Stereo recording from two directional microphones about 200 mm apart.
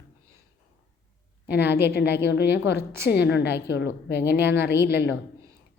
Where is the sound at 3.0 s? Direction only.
55° left (ahead or behind).